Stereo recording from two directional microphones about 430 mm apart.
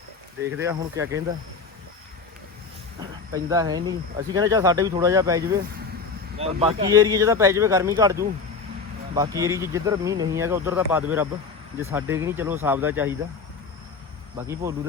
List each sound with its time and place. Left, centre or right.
0.5 s speech: centre
3.0 s speech: centre
14.3 s speech: centre